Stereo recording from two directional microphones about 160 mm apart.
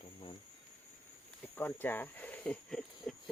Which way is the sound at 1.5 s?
10° left (ahead or behind).